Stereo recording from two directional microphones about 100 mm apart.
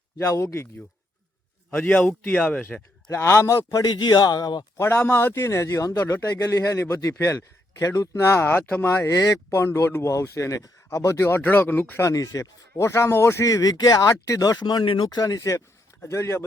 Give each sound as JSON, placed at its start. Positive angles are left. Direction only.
{"t": 0.2, "sound": "a man's voice", "side_deg": 30}
{"t": 1.7, "sound": "a man's voice", "side_deg": 10}
{"t": 3.1, "sound": "speech", "side_deg": 30}
{"t": 4.8, "sound": "a man's voice", "side_deg": 20}